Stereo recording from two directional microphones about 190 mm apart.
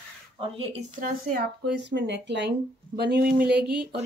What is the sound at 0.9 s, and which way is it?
Speech, 45° right (ahead or behind).